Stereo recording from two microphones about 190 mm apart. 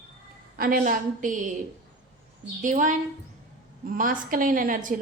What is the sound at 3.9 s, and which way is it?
A woman's voice, 45° right (ahead or behind).